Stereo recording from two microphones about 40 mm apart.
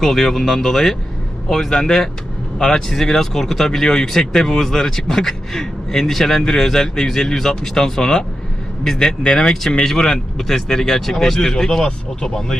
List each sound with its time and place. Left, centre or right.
0.0 s speech: centre